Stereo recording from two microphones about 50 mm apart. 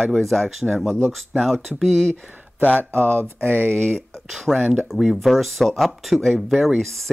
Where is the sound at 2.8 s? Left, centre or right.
Right.